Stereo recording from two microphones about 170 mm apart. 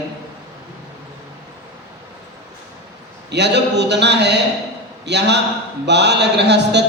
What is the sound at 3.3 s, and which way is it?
Speech, 90° right.